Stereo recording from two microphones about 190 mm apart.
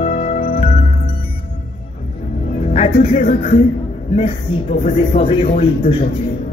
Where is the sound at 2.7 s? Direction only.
35° left (ahead or behind).